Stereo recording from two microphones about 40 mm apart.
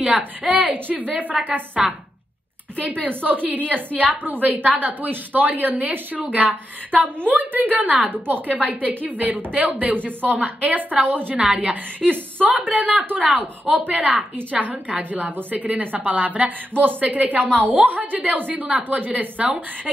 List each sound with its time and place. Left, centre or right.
0.4 s a woman's voice: right
11.4 s a woman's voice: right
11.7 s a woman's voice: right
12.4 s a woman's voice: right